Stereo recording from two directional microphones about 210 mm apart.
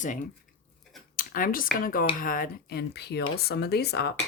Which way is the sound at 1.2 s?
40° left (ahead or behind).